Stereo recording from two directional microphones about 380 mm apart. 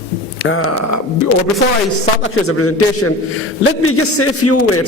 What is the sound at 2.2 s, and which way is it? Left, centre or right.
A man's voice, left.